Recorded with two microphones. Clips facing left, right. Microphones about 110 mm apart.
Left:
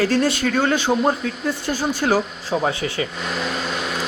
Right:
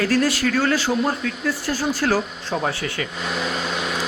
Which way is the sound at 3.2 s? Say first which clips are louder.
Even; centre (ahead or behind).